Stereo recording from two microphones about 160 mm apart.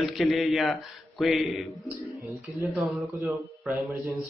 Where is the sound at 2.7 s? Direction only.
Centre (ahead or behind).